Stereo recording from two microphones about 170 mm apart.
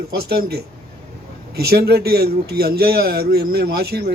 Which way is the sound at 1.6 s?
65° right (ahead or behind).